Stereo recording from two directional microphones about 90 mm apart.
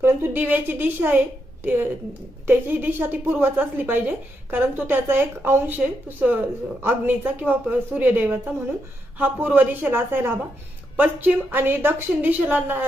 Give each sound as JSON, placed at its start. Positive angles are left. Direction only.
{"t": 0.0, "sound": "speech", "side_deg": -25}